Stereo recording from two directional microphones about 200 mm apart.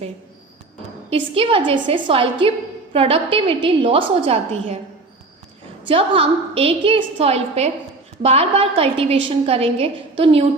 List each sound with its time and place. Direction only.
1.1 s a woman's voice: 25° right (ahead or behind)
5.9 s a woman's voice: 30° right (ahead or behind)